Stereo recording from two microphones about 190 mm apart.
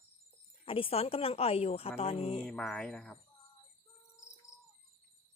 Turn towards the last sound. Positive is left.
turn(degrees=15)  # may be behind; listen again after turning